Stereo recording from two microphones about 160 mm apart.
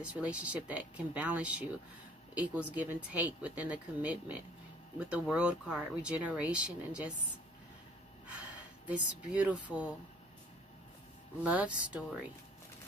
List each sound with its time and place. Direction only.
0.0 s speech: 5° right (ahead or behind)
8.3 s speech: 10° right (ahead or behind)
11.4 s speech: 10° right (ahead or behind)